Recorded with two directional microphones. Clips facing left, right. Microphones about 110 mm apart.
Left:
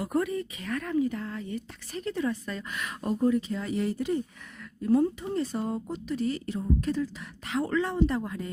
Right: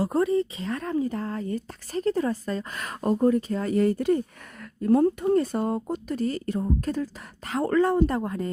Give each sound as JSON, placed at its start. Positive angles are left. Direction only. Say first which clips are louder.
{"t": 0.0, "sound": "speech", "louder": "right 6 dB", "side_deg": -30}